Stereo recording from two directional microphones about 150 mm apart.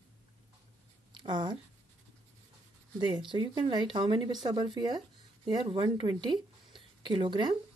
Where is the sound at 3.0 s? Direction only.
35° right (ahead or behind).